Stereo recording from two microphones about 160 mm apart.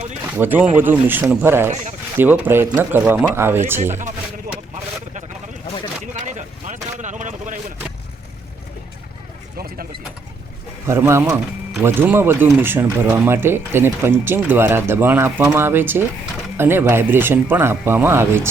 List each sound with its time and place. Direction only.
0.3 s speech: 10° right (ahead or behind)
6.2 s a sound: 50° right (ahead or behind)
9.6 s vehicle: 70° right (ahead or behind)
10.8 s speech: 15° right (ahead or behind)